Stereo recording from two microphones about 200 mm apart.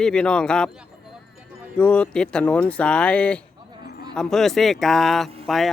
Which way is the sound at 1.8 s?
5° left (ahead or behind).